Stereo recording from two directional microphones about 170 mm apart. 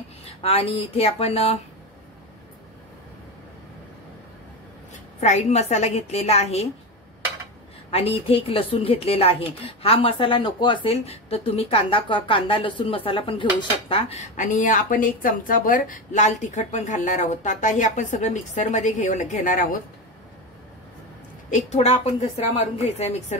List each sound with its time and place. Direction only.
0.3 s a woman's voice: 35° left (ahead or behind)
4.9 s a woman's voice: 45° left (ahead or behind)
7.9 s a woman's voice: 35° left (ahead or behind)
21.5 s a woman's voice: 45° left (ahead or behind)